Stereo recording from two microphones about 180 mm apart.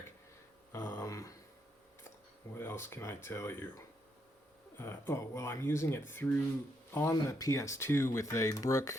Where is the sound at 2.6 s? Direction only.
15° left (ahead or behind).